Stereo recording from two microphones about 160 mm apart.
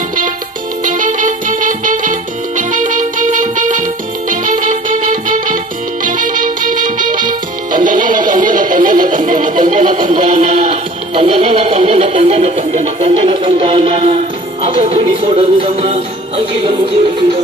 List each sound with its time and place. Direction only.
0.8 s music: 55° right (ahead or behind)